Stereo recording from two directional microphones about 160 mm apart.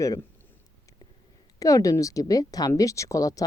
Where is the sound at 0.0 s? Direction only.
20° left (ahead or behind).